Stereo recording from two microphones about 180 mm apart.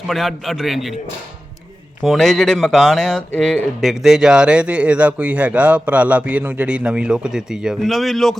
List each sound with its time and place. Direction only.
0.1 s speech: centre (ahead or behind)
2.0 s speech: centre (ahead or behind)